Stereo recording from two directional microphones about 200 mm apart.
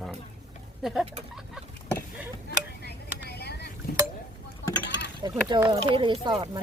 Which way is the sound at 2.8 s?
55° left (ahead or behind).